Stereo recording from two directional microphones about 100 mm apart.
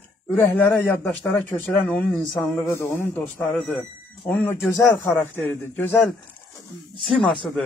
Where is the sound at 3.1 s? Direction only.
20° left (ahead or behind).